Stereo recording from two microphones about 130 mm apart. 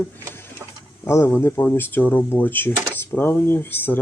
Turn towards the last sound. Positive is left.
turn(degrees=15)  # may be behind; listen again after turning